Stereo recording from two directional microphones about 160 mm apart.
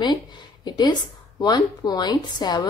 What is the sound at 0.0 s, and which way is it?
A woman's voice, 30° left (ahead or behind).